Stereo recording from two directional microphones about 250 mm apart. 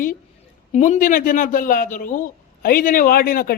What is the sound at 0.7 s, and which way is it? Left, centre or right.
A man's voice, left.